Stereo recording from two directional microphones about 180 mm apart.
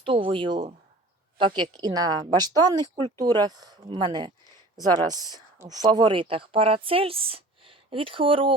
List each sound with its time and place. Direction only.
0.0 s speech: 30° right (ahead or behind)